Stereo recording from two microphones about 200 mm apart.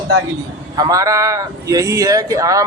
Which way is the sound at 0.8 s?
20° right (ahead or behind).